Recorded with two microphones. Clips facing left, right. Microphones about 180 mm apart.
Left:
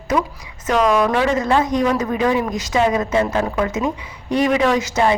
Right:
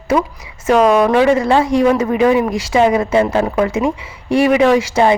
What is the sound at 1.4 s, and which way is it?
Speech, 30° right (ahead or behind).